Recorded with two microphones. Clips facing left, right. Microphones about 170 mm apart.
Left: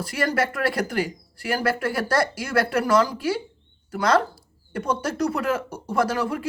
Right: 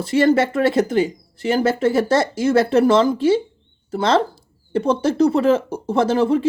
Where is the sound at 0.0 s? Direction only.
25° right (ahead or behind).